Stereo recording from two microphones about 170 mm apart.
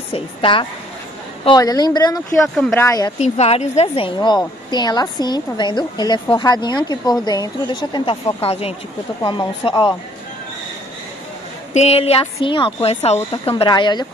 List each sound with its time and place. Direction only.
0.1 s a woman's voice: 30° left (ahead or behind)
3.2 s a woman's voice: 40° left (ahead or behind)
11.7 s a woman's voice: 40° left (ahead or behind)